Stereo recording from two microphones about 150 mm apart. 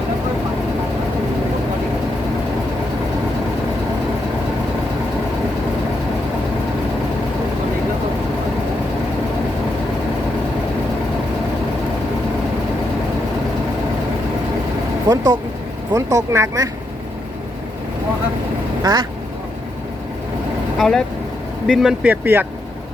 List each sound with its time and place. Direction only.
15.1 s speech: 25° right (ahead or behind)
18.8 s speech: 25° right (ahead or behind)
20.7 s speech: centre (ahead or behind)